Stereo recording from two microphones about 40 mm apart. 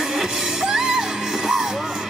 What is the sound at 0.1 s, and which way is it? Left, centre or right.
Music, centre.